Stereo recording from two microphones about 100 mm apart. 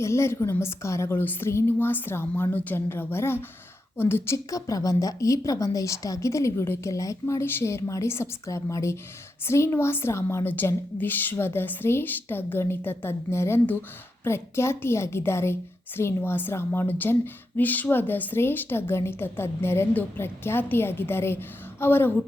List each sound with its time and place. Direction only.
0.0 s a woman's voice: 30° left (ahead or behind)